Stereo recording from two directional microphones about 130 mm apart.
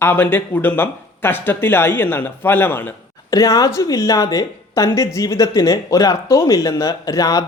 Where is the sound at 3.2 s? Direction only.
25° left (ahead or behind).